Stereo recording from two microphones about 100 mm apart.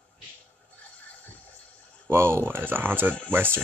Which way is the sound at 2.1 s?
25° right (ahead or behind).